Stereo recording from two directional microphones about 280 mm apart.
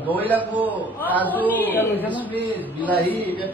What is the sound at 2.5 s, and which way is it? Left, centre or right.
Speech, centre.